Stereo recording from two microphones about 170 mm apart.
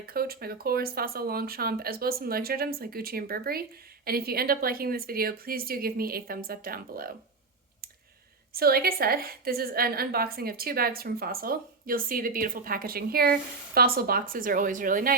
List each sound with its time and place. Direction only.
0.0 s speech: 60° right (ahead or behind)
8.5 s speech: 65° right (ahead or behind)